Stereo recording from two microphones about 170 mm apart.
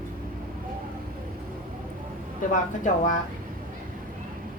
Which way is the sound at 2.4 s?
50° left (ahead or behind).